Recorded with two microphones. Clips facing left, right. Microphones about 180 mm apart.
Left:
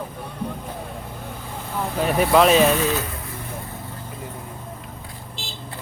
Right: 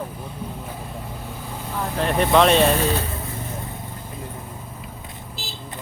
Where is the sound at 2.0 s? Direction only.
5° left (ahead or behind).